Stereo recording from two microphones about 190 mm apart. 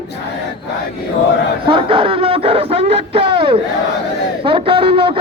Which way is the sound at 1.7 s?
25° right (ahead or behind).